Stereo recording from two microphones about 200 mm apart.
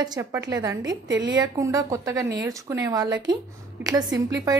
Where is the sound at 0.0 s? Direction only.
20° right (ahead or behind).